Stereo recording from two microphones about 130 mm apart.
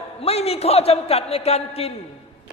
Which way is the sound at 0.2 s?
50° left (ahead or behind).